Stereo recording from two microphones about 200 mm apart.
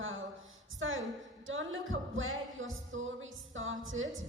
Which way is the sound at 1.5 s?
75° right (ahead or behind).